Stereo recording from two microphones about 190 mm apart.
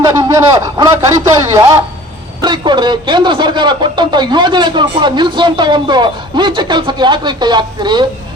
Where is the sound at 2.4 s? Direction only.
25° right (ahead or behind).